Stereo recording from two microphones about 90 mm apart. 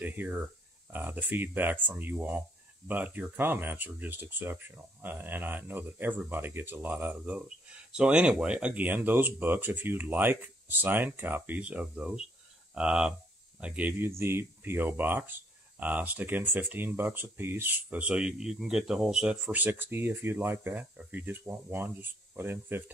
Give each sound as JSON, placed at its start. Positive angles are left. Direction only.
{"t": 0.0, "sound": "speech", "side_deg": -20}
{"t": 19.4, "sound": "speech", "side_deg": -20}